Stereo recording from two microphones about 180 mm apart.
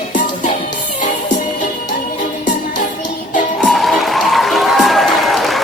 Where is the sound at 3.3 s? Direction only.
45° left (ahead or behind).